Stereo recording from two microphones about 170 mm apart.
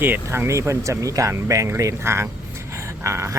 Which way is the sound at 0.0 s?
15° right (ahead or behind).